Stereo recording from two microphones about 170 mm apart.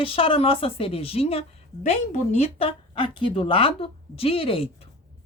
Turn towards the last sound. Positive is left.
turn(degrees=35)  # may be behind; listen again after turning